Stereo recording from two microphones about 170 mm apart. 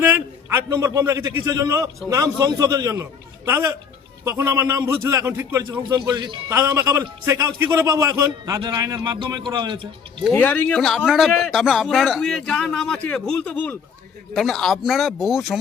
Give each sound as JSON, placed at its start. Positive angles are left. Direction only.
{"t": 0.0, "sound": "a sound", "side_deg": -15}
{"t": 1.5, "sound": "a man's voice", "side_deg": -20}
{"t": 6.1, "sound": "a man's voice", "side_deg": -25}
{"t": 10.3, "sound": "speech", "side_deg": 10}